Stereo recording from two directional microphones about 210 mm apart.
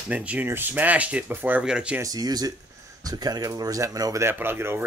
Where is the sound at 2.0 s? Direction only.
20° right (ahead or behind).